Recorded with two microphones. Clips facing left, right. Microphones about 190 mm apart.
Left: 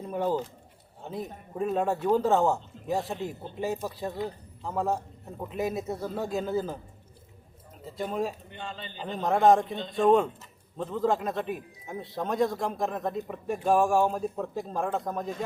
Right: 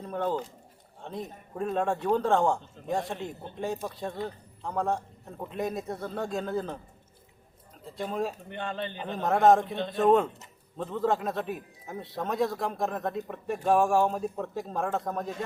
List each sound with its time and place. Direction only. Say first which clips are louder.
0.0 s a man's voice: left 2 dB; 10° left (ahead or behind)
7.9 s a man's voice: left 1 dB; centre (ahead or behind)
8.4 s a man's voice: right 6 dB; 60° right (ahead or behind)
9.0 s a man's voice: even; centre (ahead or behind)